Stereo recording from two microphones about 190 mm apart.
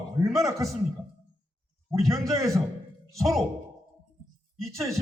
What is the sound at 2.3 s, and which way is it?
Speech, 15° right (ahead or behind).